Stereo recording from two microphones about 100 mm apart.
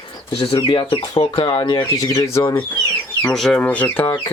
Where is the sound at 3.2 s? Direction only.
5° left (ahead or behind).